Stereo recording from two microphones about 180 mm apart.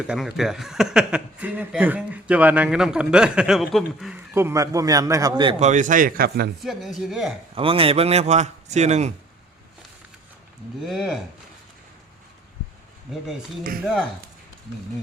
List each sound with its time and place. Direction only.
0.1 s speech: 5° right (ahead or behind); by 5.5 s 25° right (ahead or behind)
5.5 s speech: 40° right (ahead or behind); by 6.5 s 65° right (ahead or behind)
6.6 s speech: centre (ahead or behind)
7.5 s a man's voice: 30° right (ahead or behind)
10.8 s speech: centre (ahead or behind)